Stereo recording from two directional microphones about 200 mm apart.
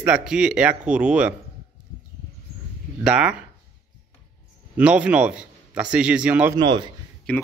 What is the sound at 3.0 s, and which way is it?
Speech, 5° right (ahead or behind).